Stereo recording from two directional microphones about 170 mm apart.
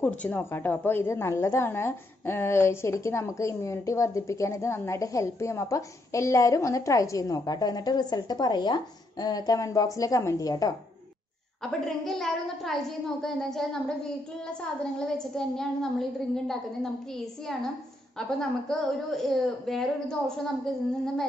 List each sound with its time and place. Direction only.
0.0 s a woman's voice: 10° left (ahead or behind)
11.6 s a woman's voice: centre (ahead or behind)